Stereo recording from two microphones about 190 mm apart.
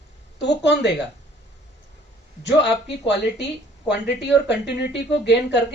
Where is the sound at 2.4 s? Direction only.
65° left (ahead or behind).